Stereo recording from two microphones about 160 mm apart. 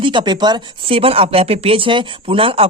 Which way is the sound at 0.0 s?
30° right (ahead or behind).